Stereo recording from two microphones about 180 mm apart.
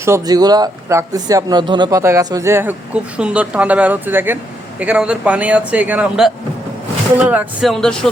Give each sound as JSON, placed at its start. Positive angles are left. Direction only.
{"t": 0.0, "sound": "speech", "side_deg": -20}